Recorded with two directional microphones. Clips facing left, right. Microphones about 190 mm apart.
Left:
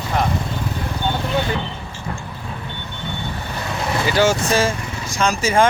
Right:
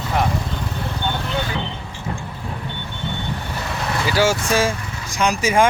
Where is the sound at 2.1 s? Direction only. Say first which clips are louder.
Right 1 dB; 15° right (ahead or behind).